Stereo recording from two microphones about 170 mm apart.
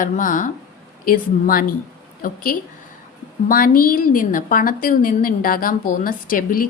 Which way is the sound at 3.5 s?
55° left (ahead or behind).